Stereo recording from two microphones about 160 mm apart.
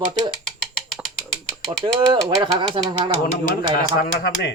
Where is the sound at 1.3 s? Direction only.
5° left (ahead or behind).